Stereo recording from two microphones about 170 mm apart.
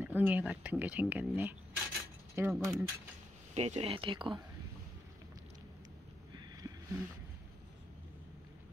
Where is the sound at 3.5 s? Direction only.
35° right (ahead or behind).